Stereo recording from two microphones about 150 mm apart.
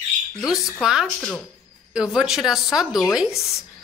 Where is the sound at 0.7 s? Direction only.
Centre (ahead or behind).